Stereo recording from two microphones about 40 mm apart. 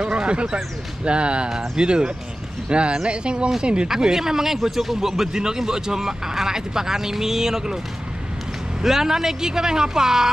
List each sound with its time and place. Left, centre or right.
0.0 s a sound: right
1.0 s speech: right
3.9 s speech: centre
8.8 s speech: centre